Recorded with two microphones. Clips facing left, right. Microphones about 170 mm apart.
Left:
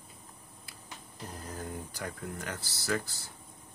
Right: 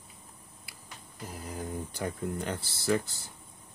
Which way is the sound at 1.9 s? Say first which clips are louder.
Right 6 dB; 25° right (ahead or behind).